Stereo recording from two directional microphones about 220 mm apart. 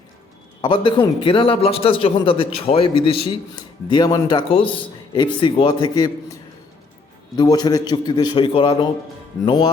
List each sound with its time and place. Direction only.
0.6 s a man's voice: 20° left (ahead or behind)
7.3 s a man's voice: 20° left (ahead or behind)